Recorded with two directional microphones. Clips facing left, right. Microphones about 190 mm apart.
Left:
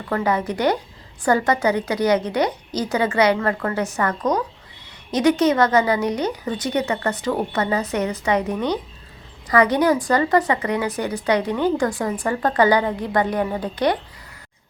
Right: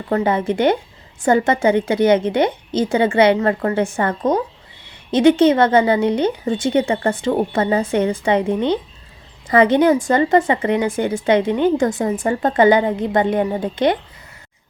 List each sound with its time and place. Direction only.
0.1 s speech: 25° right (ahead or behind)